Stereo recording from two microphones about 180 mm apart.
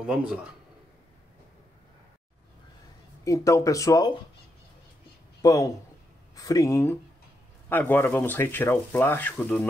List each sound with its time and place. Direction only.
0.0 s speech: 5° right (ahead or behind)
3.3 s speech: 15° left (ahead or behind)
5.4 s speech: 20° left (ahead or behind)